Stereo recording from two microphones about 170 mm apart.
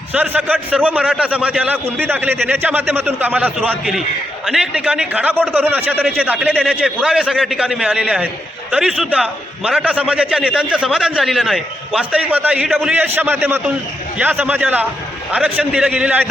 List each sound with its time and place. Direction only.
0.1 s a man's voice: 10° right (ahead or behind)